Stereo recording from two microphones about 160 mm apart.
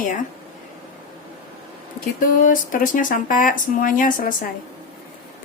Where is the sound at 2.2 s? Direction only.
55° left (ahead or behind).